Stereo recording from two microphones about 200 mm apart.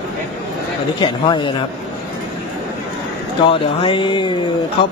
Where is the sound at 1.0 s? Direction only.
25° left (ahead or behind).